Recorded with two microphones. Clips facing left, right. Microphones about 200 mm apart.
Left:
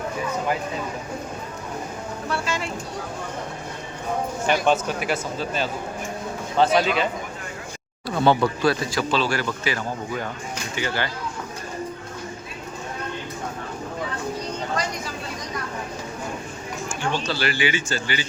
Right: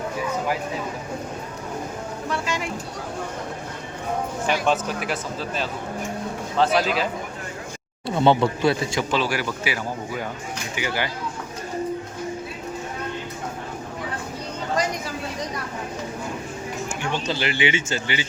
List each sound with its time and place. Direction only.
2.3 s speech: 15° right (ahead or behind)
4.4 s speech: centre (ahead or behind)
8.0 s speech: 25° right (ahead or behind)
17.2 s speech: 20° right (ahead or behind)